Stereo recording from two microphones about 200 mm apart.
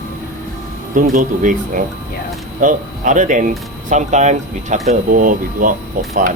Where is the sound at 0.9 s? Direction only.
40° right (ahead or behind).